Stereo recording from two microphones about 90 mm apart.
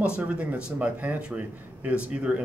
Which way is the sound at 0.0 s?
15° right (ahead or behind).